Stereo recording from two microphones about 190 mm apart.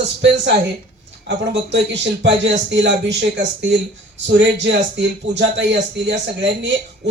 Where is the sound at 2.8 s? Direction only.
70° right (ahead or behind).